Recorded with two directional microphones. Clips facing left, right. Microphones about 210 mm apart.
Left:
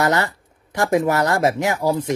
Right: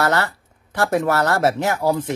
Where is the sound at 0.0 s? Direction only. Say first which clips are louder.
Left 1 dB; 15° left (ahead or behind).